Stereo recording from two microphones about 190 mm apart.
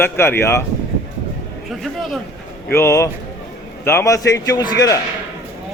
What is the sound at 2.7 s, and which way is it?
A man's voice, 15° left (ahead or behind).